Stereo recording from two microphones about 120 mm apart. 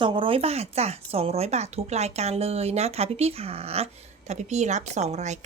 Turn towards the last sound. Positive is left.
turn(degrees=-75)  # may be behind; listen again after turning